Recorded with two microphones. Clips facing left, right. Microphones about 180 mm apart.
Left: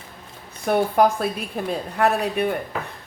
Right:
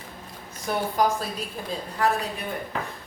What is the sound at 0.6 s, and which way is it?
Speech, 60° left (ahead or behind).